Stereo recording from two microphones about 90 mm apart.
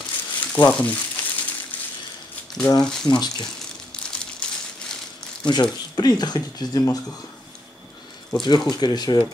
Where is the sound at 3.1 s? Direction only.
55° left (ahead or behind).